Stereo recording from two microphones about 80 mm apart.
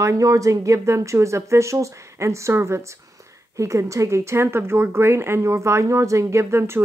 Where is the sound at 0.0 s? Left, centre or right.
Right.